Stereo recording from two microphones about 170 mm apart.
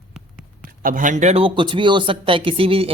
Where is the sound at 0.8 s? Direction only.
50° right (ahead or behind).